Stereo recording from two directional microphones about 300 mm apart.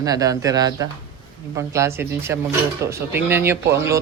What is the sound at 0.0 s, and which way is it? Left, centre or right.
Speech, centre.